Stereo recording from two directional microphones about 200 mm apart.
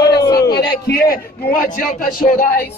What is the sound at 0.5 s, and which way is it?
A man's voice, 50° left (ahead or behind).